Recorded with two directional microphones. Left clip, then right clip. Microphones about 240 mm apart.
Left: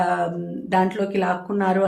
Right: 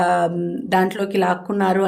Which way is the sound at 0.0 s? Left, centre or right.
Right.